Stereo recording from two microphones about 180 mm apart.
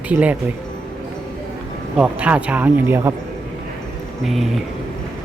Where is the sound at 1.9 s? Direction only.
10° right (ahead or behind).